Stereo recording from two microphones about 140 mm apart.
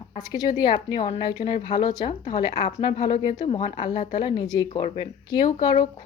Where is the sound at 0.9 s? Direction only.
40° left (ahead or behind).